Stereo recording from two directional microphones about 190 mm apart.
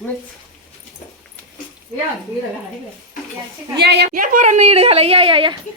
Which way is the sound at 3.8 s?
60° right (ahead or behind).